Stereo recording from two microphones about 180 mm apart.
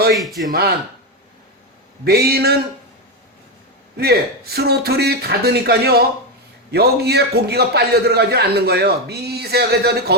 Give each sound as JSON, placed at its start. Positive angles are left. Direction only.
{"t": 0.1, "sound": "speech", "side_deg": 0}
{"t": 2.0, "sound": "a man's voice", "side_deg": -60}
{"t": 3.9, "sound": "a man's voice", "side_deg": -60}